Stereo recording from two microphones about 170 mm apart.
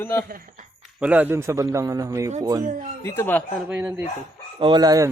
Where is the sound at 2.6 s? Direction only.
50° right (ahead or behind).